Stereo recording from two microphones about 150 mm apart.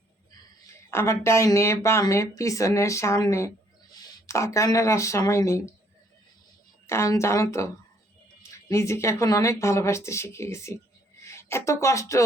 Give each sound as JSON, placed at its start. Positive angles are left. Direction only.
{"t": 0.9, "sound": "speech", "side_deg": 20}
{"t": 6.8, "sound": "speech", "side_deg": 20}